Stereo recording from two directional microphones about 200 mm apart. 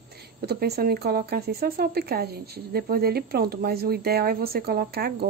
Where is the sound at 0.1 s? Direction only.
55° right (ahead or behind).